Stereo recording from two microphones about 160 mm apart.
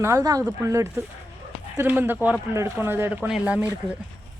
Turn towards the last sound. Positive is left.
turn(degrees=-10)  # may be behind; listen again after turning